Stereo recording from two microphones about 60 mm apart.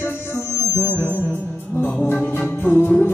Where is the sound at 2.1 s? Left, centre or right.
Left.